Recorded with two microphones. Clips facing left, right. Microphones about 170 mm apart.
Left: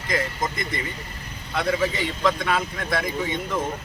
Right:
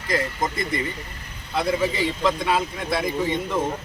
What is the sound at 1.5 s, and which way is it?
Speech, 25° right (ahead or behind).